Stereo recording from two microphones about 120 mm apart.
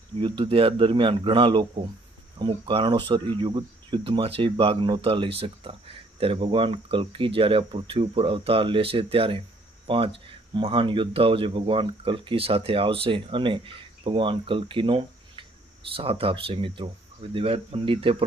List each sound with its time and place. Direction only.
0.2 s speech: 45° right (ahead or behind)
4.0 s speech: 50° right (ahead or behind)